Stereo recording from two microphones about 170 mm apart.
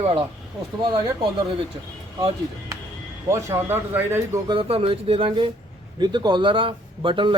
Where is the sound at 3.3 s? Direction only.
15° right (ahead or behind).